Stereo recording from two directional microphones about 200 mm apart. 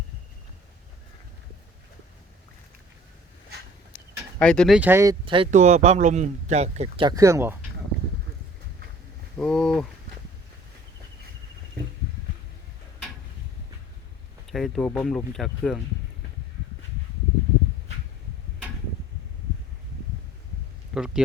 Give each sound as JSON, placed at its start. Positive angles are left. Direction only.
{"t": 4.2, "sound": "a sound", "side_deg": 5}
{"t": 4.8, "sound": "speech", "side_deg": -10}
{"t": 5.2, "sound": "speech", "side_deg": -25}
{"t": 5.5, "sound": "speech", "side_deg": -35}
{"t": 9.4, "sound": "speech", "side_deg": 5}
{"t": 14.4, "sound": "speech", "side_deg": 0}
{"t": 20.9, "sound": "speech", "side_deg": -5}